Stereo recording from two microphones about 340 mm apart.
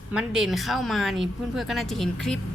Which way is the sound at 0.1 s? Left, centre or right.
Centre.